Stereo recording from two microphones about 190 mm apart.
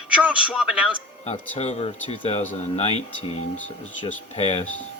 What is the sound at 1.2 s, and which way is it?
Speech, 35° left (ahead or behind).